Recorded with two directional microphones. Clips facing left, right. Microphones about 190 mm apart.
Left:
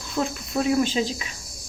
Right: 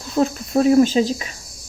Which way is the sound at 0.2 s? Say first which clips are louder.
Right 8 dB; 40° right (ahead or behind).